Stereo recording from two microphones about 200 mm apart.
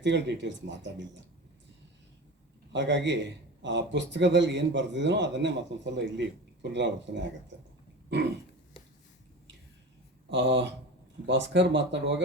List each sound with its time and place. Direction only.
0.0 s a man's voice: 60° right (ahead or behind)
2.7 s a man's voice: 60° right (ahead or behind)
10.2 s a man's voice: 65° right (ahead or behind)